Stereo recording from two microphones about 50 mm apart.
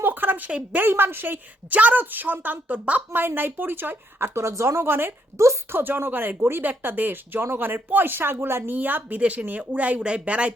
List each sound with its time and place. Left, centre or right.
0.0 s a sound: right
0.8 s a woman's voice: right
1.7 s a woman's voice: right
3.1 s a woman's voice: right
4.4 s speech: right
5.4 s a woman's voice: right
5.7 s a woman's voice: right
8.7 s a woman's voice: right